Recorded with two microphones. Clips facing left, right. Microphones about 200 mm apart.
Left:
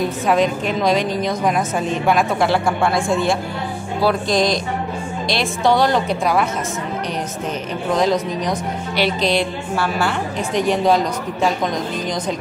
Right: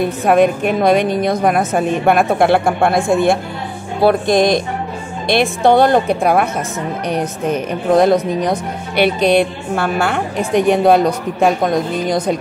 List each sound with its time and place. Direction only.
0.0 s a woman's voice: 60° right (ahead or behind)